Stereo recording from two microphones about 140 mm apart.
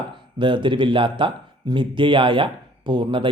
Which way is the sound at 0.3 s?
35° right (ahead or behind).